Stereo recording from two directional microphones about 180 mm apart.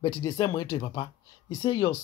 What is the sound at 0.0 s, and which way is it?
Speech, 20° left (ahead or behind).